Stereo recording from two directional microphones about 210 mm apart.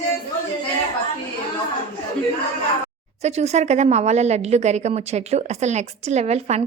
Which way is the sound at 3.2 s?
30° right (ahead or behind).